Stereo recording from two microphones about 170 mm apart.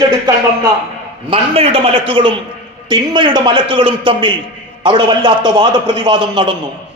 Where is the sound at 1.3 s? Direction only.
35° right (ahead or behind).